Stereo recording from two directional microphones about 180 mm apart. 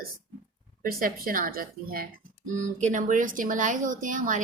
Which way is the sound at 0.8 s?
55° right (ahead or behind).